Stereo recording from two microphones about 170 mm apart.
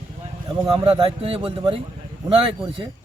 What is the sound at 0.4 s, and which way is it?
A man's voice, 30° right (ahead or behind).